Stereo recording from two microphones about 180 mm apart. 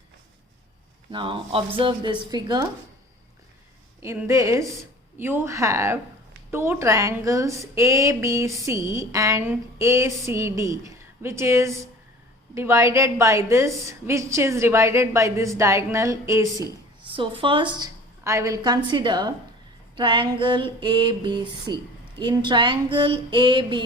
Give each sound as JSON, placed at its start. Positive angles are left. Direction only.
{"t": 1.1, "sound": "a woman's voice", "side_deg": -25}
{"t": 4.0, "sound": "a woman's voice", "side_deg": -15}
{"t": 17.1, "sound": "a woman's voice", "side_deg": -30}